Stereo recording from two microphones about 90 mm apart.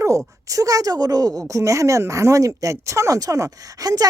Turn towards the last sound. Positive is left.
turn(degrees=-45)  # may be behind; listen again after turning